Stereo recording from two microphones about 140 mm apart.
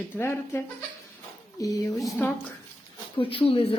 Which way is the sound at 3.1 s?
40° left (ahead or behind).